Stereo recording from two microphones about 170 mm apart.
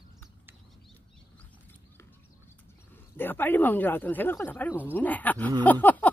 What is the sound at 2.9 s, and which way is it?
Speech, 10° left (ahead or behind).